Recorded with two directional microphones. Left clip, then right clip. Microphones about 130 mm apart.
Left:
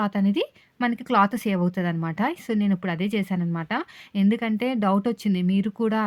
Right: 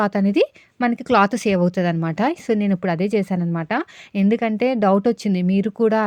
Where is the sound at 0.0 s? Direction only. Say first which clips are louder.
Right 7 dB; 40° right (ahead or behind).